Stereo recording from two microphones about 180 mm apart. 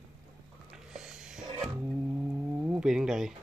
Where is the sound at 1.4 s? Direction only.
30° right (ahead or behind).